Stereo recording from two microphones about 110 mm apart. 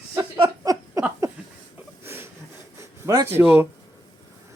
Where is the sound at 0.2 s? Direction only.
40° right (ahead or behind).